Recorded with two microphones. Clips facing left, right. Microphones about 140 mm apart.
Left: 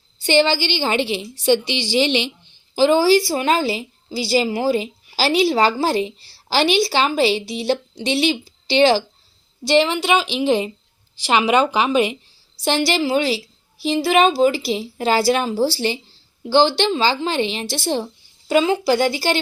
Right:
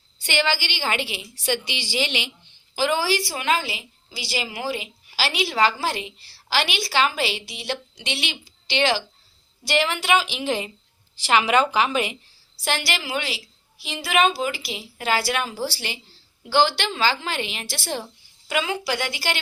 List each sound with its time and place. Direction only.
0.2 s a woman's voice: 30° left (ahead or behind)
9.6 s a woman's voice: 25° left (ahead or behind)
18.4 s a woman's voice: 30° left (ahead or behind)